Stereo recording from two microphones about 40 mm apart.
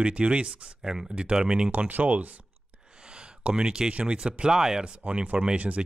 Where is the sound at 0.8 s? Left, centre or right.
Centre.